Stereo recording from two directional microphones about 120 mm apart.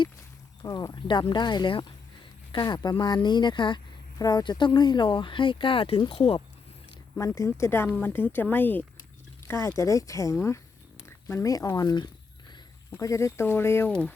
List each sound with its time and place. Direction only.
0.6 s speech: 35° left (ahead or behind); by 6.4 s 50° left (ahead or behind)
7.2 s speech: 30° left (ahead or behind)